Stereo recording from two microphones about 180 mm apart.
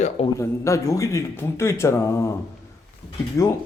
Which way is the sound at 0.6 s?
15° left (ahead or behind).